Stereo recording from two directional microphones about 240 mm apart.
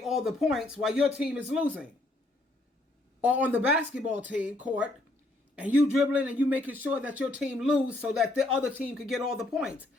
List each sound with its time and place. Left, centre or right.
0.0 s speech: centre
3.2 s speech: centre